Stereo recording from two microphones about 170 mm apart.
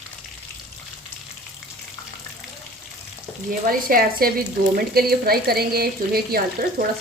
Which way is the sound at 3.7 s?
60° right (ahead or behind).